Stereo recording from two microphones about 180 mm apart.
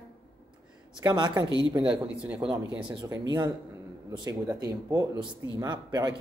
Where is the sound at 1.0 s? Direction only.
25° right (ahead or behind).